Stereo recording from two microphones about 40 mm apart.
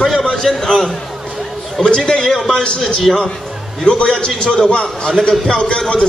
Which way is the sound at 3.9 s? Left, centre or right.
Left.